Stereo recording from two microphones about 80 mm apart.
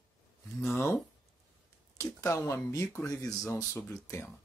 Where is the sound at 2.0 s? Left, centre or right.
Left.